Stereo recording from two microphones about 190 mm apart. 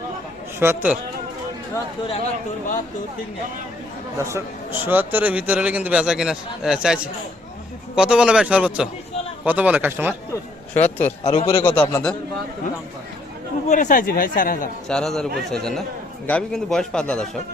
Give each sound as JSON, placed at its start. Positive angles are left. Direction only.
{"t": 0.6, "sound": "a man's voice", "side_deg": -10}
{"t": 2.0, "sound": "speech", "side_deg": 30}
{"t": 4.2, "sound": "a man's voice", "side_deg": -15}
{"t": 10.8, "sound": "a man's voice", "side_deg": 10}
{"t": 11.2, "sound": "a man's voice", "side_deg": 30}
{"t": 11.6, "sound": "a man's voice", "side_deg": 10}
{"t": 13.7, "sound": "speech", "side_deg": 40}
{"t": 14.8, "sound": "a man's voice", "side_deg": 5}